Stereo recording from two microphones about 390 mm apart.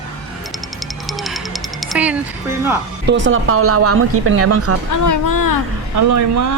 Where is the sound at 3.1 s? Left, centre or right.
Right.